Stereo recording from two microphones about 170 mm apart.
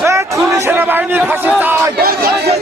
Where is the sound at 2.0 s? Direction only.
65° right (ahead or behind).